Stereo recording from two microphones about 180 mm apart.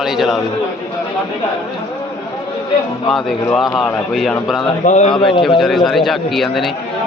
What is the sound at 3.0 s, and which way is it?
A man's voice, centre (ahead or behind).